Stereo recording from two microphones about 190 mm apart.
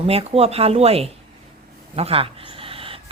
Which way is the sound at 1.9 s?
30° right (ahead or behind).